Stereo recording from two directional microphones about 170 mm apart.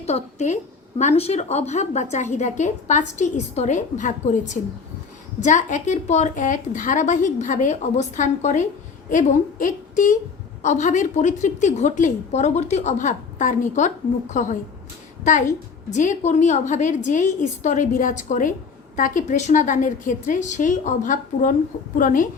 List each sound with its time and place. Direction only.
0.0 s a woman's voice: 40° left (ahead or behind)